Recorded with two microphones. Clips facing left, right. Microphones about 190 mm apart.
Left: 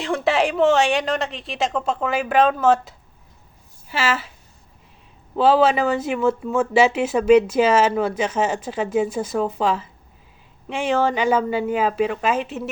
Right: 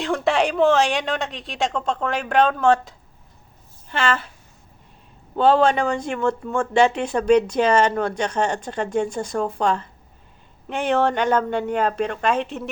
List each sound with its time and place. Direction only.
0.0 s a woman's voice: centre (ahead or behind)
5.4 s speech: 5° left (ahead or behind)